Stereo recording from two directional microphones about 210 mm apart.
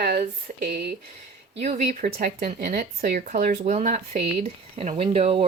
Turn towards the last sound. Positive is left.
turn(degrees=-30)  # may be behind; listen again after turning